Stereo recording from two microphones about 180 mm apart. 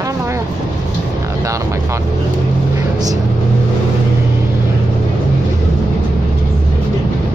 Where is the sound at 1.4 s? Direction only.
15° right (ahead or behind).